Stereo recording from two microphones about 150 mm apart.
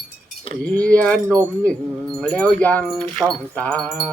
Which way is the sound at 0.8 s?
10° left (ahead or behind).